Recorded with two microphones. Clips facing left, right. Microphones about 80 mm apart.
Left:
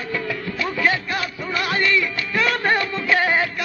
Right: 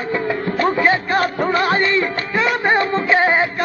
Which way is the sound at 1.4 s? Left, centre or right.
Right.